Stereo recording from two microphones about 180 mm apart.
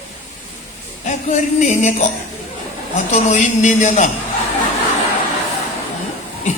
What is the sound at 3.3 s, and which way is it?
Speech, 40° left (ahead or behind).